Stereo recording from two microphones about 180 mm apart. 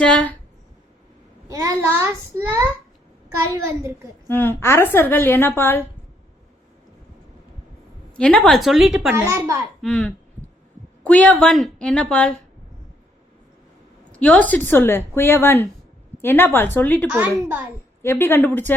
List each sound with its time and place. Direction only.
0.0 s a woman's voice: 5° left (ahead or behind)
1.5 s a child's voice: 20° right (ahead or behind)
4.3 s a woman's voice: 10° left (ahead or behind)
8.1 s a woman's voice: 5° left (ahead or behind)
9.1 s a child's voice: 15° right (ahead or behind)
9.8 s a woman's voice: 5° left (ahead or behind)
14.1 s a woman's voice: 5° left (ahead or behind)
17.1 s a child's voice: 10° right (ahead or behind)
18.0 s a woman's voice: 10° left (ahead or behind)